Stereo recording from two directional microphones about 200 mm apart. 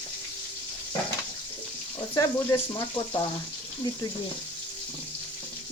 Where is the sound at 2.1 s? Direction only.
15° left (ahead or behind).